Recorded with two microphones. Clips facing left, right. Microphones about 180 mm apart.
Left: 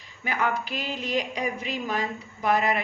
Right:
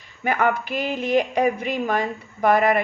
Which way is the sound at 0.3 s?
55° right (ahead or behind).